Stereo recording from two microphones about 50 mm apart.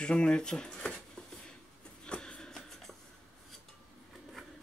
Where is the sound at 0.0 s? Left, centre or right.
Centre.